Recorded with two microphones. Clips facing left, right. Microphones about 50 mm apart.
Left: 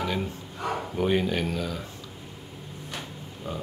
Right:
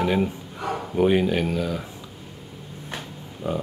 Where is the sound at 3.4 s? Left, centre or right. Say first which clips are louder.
Right 8 dB; right.